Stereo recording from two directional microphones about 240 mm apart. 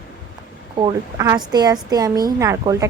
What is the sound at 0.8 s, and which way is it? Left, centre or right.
A woman's voice, centre.